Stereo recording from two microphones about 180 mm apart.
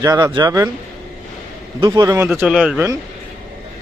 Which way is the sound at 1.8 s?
20° right (ahead or behind).